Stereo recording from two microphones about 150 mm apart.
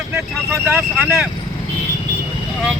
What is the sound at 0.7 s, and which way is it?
Speech, 10° right (ahead or behind).